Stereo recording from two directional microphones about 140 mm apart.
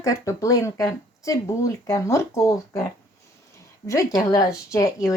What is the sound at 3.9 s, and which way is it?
Speech, 25° left (ahead or behind).